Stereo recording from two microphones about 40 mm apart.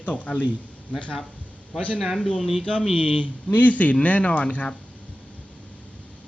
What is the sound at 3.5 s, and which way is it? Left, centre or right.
Speech, left.